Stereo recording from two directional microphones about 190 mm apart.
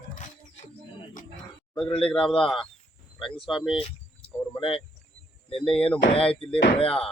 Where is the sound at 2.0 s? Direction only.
5° left (ahead or behind).